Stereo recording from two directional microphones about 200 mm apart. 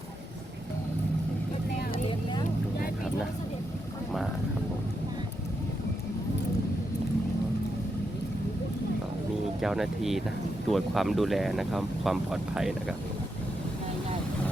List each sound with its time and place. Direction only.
9.6 s speech: centre (ahead or behind)